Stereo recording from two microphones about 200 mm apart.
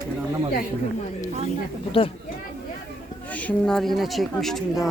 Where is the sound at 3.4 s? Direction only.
5° left (ahead or behind).